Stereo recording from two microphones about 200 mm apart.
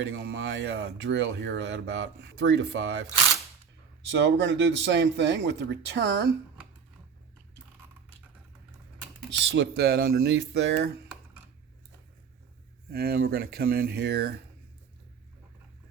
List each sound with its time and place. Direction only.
0.0 s a man's voice: 60° right (ahead or behind)
9.4 s speech: 60° right (ahead or behind)
12.9 s speech: 50° right (ahead or behind)